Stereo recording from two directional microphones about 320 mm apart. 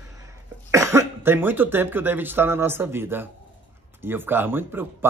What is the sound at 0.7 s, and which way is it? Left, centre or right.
Speech, centre.